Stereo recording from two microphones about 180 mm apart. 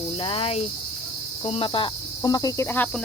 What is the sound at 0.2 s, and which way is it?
Speech, 30° left (ahead or behind).